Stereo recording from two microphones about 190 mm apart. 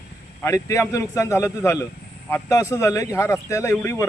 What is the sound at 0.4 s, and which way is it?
Speech, 15° left (ahead or behind).